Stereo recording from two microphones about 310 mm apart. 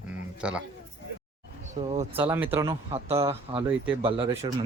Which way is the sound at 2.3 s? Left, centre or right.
Centre.